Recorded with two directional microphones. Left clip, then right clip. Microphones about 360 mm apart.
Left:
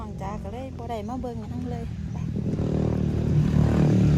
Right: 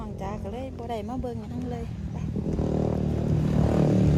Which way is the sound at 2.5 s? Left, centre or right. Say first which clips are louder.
Right 1 dB; right.